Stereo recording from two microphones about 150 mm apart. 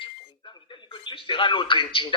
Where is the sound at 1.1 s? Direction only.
35° left (ahead or behind).